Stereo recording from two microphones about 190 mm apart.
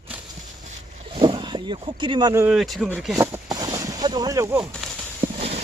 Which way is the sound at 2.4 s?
5° right (ahead or behind).